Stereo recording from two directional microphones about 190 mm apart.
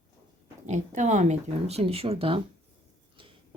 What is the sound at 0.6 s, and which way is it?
Speech, 40° right (ahead or behind).